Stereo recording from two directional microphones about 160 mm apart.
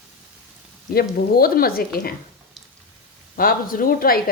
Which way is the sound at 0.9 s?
70° left (ahead or behind).